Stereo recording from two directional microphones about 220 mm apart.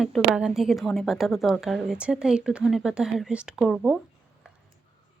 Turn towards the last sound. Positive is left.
turn(degrees=0)  # may be behind; listen again after turning